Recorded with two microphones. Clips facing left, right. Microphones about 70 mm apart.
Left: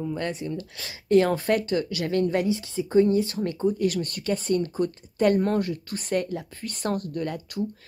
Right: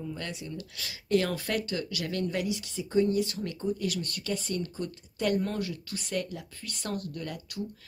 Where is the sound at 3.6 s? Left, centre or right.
Left.